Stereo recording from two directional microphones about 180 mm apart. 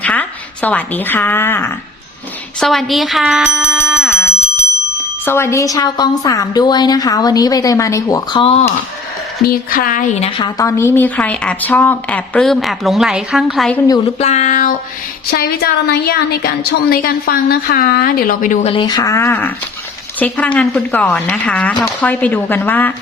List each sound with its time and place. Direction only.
0.0 s speech: 10° left (ahead or behind)
2.6 s speech: centre (ahead or behind)
5.2 s a woman's voice: 15° left (ahead or behind); by 8.6 s 30° left (ahead or behind)
9.4 s speech: 55° left (ahead or behind)
10.2 s speech: 25° left (ahead or behind); by 13.8 s 5° left (ahead or behind)
14.2 s a sound: 40° left (ahead or behind)
15.3 s a woman's voice: 55° left (ahead or behind)
18.7 s speech: 25° left (ahead or behind)